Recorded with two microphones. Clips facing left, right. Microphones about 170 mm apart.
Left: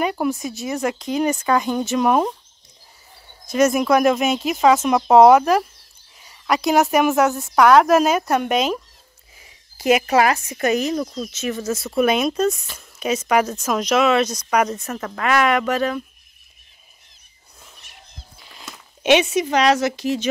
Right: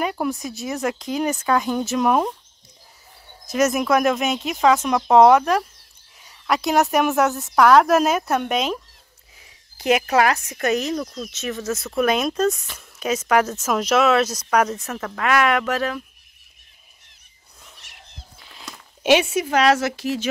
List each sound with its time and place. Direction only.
0.0 s a woman's voice: centre (ahead or behind)
3.4 s a woman's voice: 5° right (ahead or behind)
17.7 s a sound: 75° right (ahead or behind)
18.4 s speech: centre (ahead or behind)